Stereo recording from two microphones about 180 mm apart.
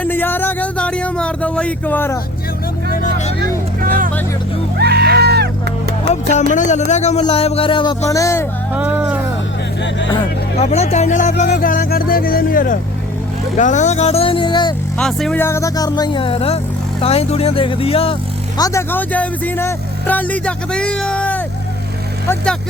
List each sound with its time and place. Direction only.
0.0 s music: 10° left (ahead or behind)
2.9 s speech: 45° left (ahead or behind)
3.8 s music: 55° right (ahead or behind)
4.8 s a sound: 65° right (ahead or behind)
6.1 s speech: 35° left (ahead or behind); by 8.4 s 15° left (ahead or behind)
8.7 s music: 10° right (ahead or behind)
10.6 s speech: 35° left (ahead or behind)
14.9 s speech: 5° left (ahead or behind)